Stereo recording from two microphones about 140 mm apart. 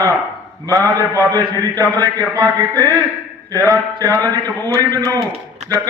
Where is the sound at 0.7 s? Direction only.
25° right (ahead or behind).